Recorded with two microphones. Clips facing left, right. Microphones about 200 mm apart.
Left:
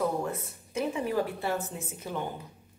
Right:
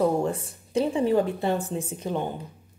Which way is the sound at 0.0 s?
30° right (ahead or behind).